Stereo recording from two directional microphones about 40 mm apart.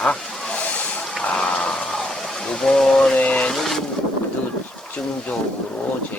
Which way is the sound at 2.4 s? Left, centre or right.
Centre.